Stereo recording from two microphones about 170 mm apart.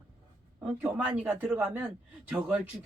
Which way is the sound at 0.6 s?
10° right (ahead or behind).